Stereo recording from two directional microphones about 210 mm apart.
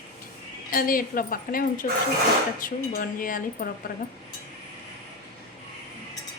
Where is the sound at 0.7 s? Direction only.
40° left (ahead or behind).